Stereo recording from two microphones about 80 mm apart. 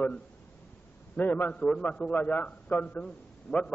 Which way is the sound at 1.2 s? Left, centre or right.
Left.